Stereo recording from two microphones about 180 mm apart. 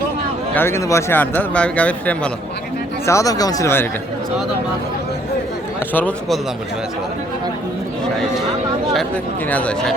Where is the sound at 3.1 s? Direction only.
20° left (ahead or behind).